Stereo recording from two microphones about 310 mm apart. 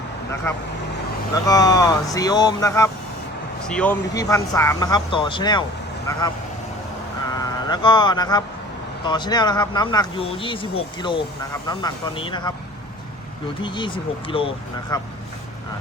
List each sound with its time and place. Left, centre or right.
0.5 s speech: centre
7.3 s speech: centre
13.6 s speech: centre